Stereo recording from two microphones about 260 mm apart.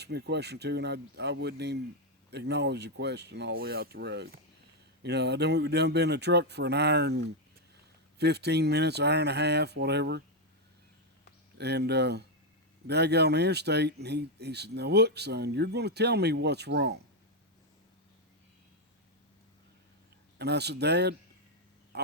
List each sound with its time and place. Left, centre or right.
0.0 s speech: right
11.5 s speech: right
20.4 s speech: right
21.9 s quack: right